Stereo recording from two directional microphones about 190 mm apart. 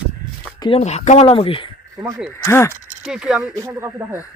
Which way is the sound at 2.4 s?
15° left (ahead or behind).